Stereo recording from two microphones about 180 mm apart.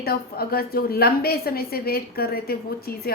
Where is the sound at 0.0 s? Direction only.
60° left (ahead or behind).